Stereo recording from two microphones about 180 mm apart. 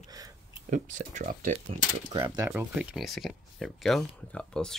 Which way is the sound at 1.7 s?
25° right (ahead or behind).